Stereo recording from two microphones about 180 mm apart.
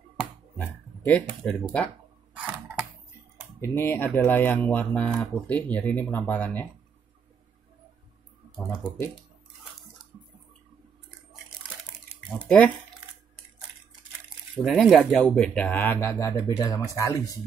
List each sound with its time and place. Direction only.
0.6 s dog: 10° left (ahead or behind)
1.4 s speech: 5° left (ahead or behind)
2.3 s a sound: 5° right (ahead or behind)
3.6 s speech: 15° left (ahead or behind)
8.5 s speech: centre (ahead or behind)
12.3 s speech: 5° left (ahead or behind)
14.7 s speech: centre (ahead or behind); by 17.2 s 15° left (ahead or behind)